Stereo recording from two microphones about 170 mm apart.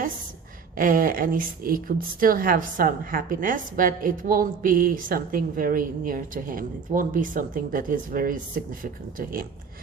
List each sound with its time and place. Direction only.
0.8 s a woman's voice: 55° right (ahead or behind)